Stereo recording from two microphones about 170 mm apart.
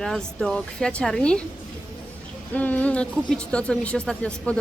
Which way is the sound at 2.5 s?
10° left (ahead or behind).